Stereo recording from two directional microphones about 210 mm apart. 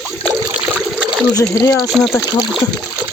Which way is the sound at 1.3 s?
15° left (ahead or behind).